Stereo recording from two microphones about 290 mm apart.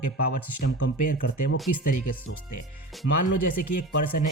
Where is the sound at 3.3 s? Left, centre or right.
Left.